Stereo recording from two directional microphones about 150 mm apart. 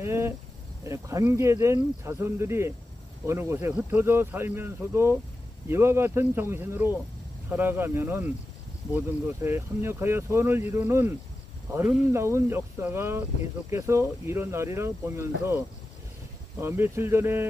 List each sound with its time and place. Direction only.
0.0 s cricket: 15° right (ahead or behind)
0.8 s speech: 20° right (ahead or behind)